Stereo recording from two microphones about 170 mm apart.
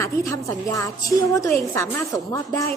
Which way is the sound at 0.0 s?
20° left (ahead or behind).